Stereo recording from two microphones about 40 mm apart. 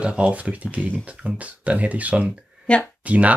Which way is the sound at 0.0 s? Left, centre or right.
Right.